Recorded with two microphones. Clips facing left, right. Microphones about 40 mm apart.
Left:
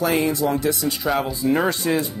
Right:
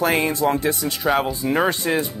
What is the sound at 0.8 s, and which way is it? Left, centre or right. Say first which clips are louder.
Speech: right 2 dB; centre.